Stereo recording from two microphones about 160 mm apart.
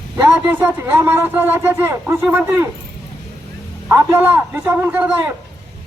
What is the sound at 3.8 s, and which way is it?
Speech, 15° right (ahead or behind).